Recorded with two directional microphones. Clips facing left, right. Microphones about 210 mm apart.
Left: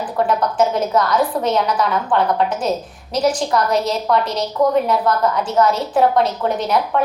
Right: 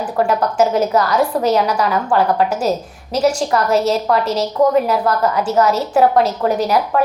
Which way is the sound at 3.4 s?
35° right (ahead or behind).